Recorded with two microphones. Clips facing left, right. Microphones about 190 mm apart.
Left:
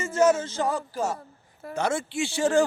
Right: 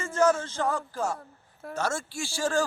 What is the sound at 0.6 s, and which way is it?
A man's voice, 10° left (ahead or behind).